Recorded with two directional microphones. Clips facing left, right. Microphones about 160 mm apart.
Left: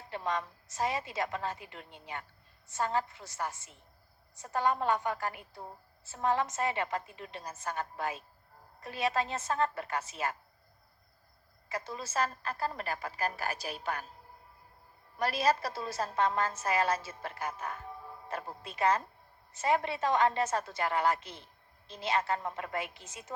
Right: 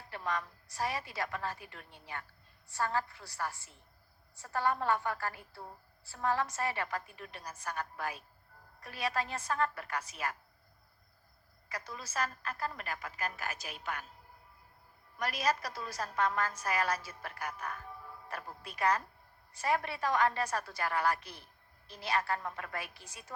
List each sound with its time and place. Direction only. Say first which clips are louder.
0.1 s a woman's voice: left 3 dB; 20° left (ahead or behind)
11.7 s a woman's voice: left 5 dB; 25° left (ahead or behind)
15.2 s a woman's voice: left 4 dB; 30° left (ahead or behind)